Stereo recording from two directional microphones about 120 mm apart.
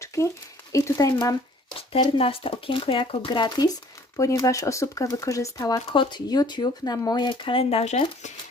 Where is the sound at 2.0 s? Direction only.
50° left (ahead or behind).